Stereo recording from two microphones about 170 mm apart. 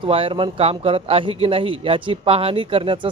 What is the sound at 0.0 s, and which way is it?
Speech, 30° right (ahead or behind).